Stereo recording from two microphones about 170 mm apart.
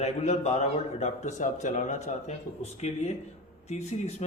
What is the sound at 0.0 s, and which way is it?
Speech, 40° left (ahead or behind).